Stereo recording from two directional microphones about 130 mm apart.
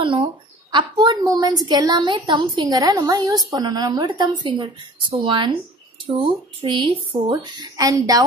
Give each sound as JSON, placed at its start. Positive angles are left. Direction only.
{"t": 0.0, "sound": "speech", "side_deg": -40}